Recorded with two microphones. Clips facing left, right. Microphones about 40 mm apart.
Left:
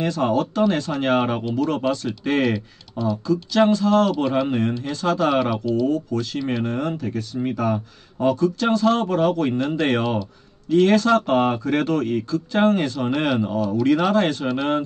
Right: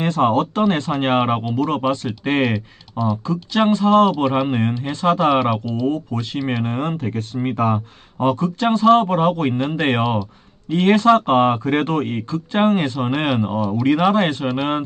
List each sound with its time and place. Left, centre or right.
0.0 s speech: right
2.5 s speech: centre
3.3 s speech: right; by 5.9 s centre
5.9 s speech: right